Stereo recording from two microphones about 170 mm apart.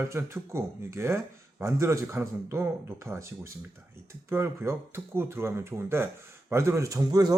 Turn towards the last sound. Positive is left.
turn(degrees=-20)  # may be behind; listen again after turning